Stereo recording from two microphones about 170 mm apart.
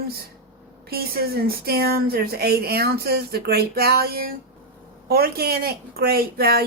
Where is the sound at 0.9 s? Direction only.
65° right (ahead or behind).